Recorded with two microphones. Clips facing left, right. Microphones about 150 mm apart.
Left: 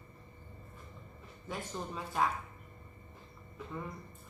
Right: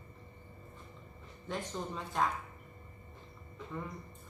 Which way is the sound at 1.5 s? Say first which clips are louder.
Right 2 dB; 5° left (ahead or behind).